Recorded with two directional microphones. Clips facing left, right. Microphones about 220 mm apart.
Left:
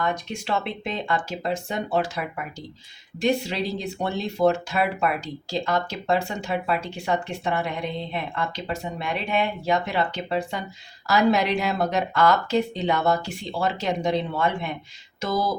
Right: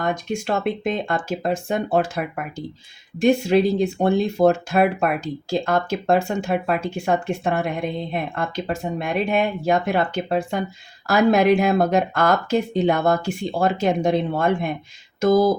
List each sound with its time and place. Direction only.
0.0 s speech: 50° right (ahead or behind)